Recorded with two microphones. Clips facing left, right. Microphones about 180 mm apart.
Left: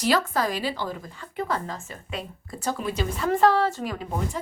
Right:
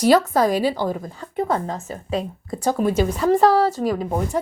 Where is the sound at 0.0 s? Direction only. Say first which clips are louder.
Right 8 dB; 45° right (ahead or behind).